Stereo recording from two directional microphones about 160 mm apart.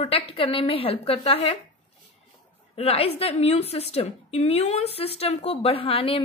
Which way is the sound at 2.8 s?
40° left (ahead or behind).